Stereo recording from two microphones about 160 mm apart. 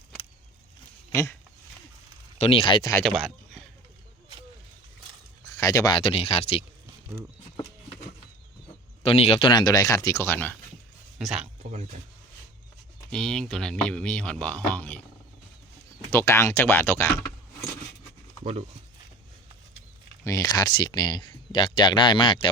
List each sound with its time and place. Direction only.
1.1 s speech: 20° left (ahead or behind)
2.4 s speech: 35° left (ahead or behind)
3.0 s speech: 5° left (ahead or behind)
5.5 s speech: 20° left (ahead or behind); by 6.7 s 40° left (ahead or behind)
7.5 s a sound: 25° left (ahead or behind)
9.0 s speech: 35° left (ahead or behind); by 10.6 s 15° left (ahead or behind)
11.2 s speech: 5° right (ahead or behind)
13.1 s speech: 5° left (ahead or behind)
16.0 s speech: 15° left (ahead or behind)
20.2 s speech: 20° left (ahead or behind)